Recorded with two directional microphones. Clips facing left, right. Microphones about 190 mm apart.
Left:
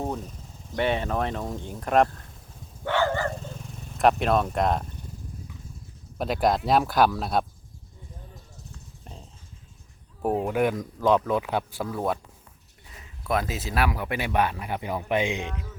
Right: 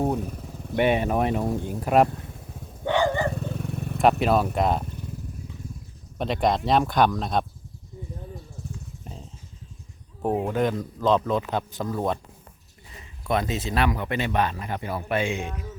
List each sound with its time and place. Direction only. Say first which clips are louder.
0.2 s a sound: right 8 dB; 65° right (ahead or behind)
0.8 s speech: right 4 dB; 15° right (ahead or behind)
2.8 s dog: right 2 dB; 15° right (ahead or behind)
3.3 s vehicle: right 8 dB; 60° right (ahead or behind)
4.2 s speech: right 2 dB; 5° right (ahead or behind)
6.1 s speech: even; centre (ahead or behind)
9.1 s motorcycle: right 2 dB; 5° right (ahead or behind)
10.4 s speech: even; 10° left (ahead or behind)